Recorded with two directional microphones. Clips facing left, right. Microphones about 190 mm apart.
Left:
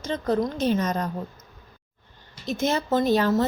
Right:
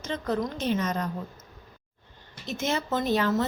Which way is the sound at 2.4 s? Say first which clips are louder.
Left 4 dB; 35° left (ahead or behind).